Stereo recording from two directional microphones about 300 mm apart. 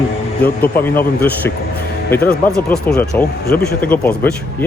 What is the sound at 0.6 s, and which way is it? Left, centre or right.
Speech, centre.